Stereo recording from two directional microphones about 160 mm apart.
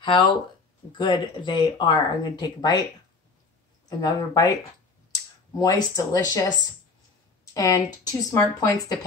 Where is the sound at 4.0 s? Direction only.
20° left (ahead or behind).